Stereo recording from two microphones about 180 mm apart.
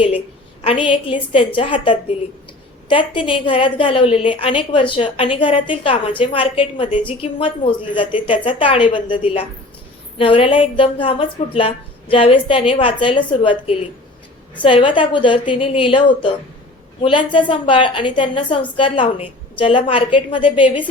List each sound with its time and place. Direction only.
0.6 s a woman's voice: 30° left (ahead or behind)